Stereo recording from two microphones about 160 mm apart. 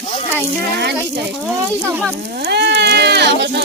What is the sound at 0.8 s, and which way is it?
Speech, 90° right.